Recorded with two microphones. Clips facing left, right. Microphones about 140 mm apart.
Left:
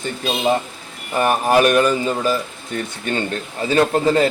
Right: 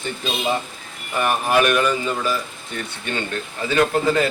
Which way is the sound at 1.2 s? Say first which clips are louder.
Left 3 dB; 40° left (ahead or behind).